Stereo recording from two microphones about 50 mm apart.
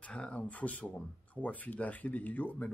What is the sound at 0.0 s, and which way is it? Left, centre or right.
A man's voice, left.